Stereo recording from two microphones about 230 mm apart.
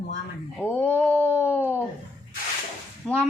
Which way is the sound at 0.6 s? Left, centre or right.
Centre.